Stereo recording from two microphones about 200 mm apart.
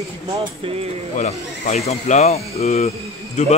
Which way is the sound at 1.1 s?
35° left (ahead or behind).